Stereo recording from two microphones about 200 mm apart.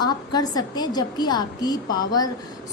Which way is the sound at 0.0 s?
20° left (ahead or behind).